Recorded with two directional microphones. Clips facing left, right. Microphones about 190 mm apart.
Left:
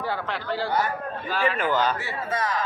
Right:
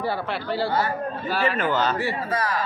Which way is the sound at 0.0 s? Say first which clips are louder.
Right 3 dB; 10° right (ahead or behind).